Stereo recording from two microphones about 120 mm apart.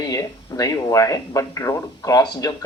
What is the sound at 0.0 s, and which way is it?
Speech, 30° left (ahead or behind).